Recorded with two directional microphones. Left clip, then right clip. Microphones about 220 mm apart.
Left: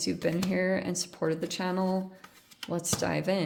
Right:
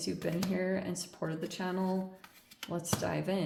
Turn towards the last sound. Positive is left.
turn(degrees=55)  # may be behind; listen again after turning